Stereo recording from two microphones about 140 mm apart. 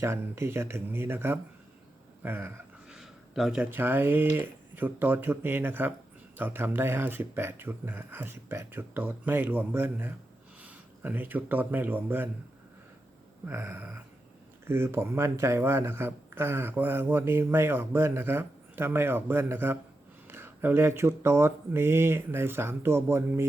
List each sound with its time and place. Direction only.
0.0 s speech: 20° right (ahead or behind)
2.9 s speech: centre (ahead or behind)
13.4 s speech: 15° right (ahead or behind)